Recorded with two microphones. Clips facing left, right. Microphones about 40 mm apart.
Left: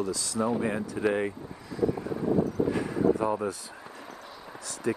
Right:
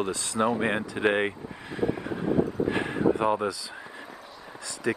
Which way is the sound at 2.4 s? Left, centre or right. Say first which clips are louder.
Right 1 dB; right.